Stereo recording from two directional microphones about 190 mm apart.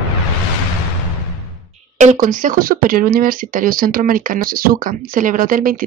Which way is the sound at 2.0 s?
40° right (ahead or behind).